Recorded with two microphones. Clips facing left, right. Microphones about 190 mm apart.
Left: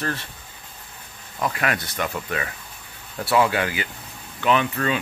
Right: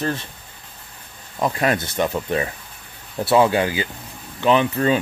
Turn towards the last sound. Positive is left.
turn(degrees=-30)  # may be behind; listen again after turning